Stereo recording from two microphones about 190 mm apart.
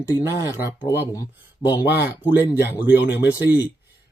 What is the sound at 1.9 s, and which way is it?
Speech, 10° right (ahead or behind).